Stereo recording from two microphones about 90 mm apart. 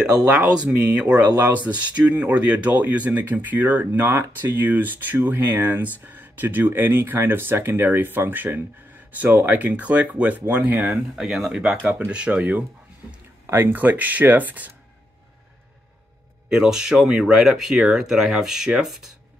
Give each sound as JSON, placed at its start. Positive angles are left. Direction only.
{"t": 0.0, "sound": "speech", "side_deg": -10}
{"t": 11.1, "sound": "speech", "side_deg": -5}
{"t": 11.8, "sound": "speech", "side_deg": -20}
{"t": 16.4, "sound": "speech", "side_deg": -5}